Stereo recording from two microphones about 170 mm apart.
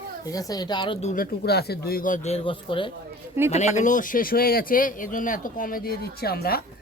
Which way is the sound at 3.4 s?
45° left (ahead or behind).